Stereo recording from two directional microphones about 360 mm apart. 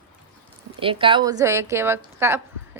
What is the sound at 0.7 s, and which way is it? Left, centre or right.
A woman's voice, centre.